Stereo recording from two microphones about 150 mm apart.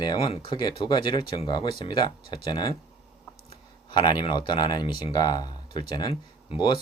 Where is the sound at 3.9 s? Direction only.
30° left (ahead or behind).